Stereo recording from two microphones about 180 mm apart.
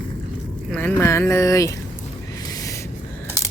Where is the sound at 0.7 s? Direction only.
10° left (ahead or behind).